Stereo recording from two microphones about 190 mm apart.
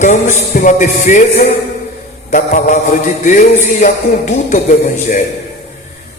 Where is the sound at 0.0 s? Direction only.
40° left (ahead or behind).